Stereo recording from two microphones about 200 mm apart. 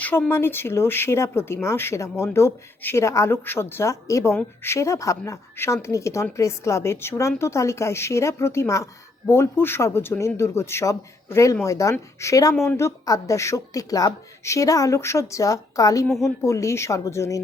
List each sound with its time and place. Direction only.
0.0 s a woman's voice: 10° left (ahead or behind)
16.0 s a woman's voice: centre (ahead or behind)
16.4 s a woman's voice: 15° left (ahead or behind)